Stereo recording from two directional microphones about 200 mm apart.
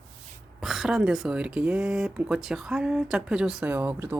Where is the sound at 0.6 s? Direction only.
Centre (ahead or behind).